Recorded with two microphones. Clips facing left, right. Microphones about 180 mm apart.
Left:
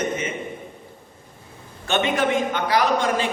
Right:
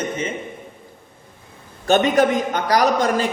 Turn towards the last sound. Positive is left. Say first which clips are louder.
# right 3 dB
turn(degrees=-40)  # may be behind; listen again after turning